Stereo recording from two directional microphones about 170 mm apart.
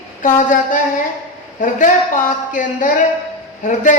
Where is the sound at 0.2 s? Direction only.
50° left (ahead or behind).